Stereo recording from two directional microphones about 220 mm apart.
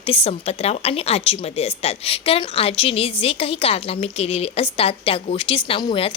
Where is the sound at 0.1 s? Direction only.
25° left (ahead or behind).